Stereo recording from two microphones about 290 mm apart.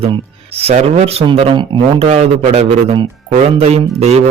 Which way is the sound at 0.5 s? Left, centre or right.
Right.